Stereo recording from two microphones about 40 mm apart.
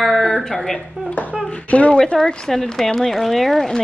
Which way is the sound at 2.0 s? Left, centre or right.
Centre.